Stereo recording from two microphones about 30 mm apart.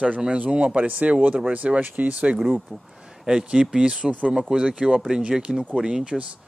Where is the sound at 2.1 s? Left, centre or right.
Right.